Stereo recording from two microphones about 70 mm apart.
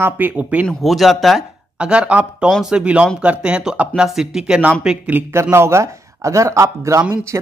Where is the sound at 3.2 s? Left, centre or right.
Centre.